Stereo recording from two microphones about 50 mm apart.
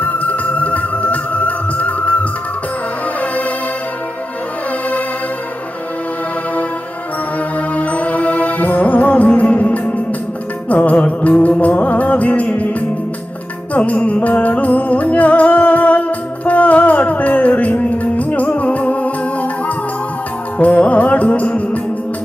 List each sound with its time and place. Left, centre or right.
0.0 s music: left
7.8 s music: left
13.7 s music: left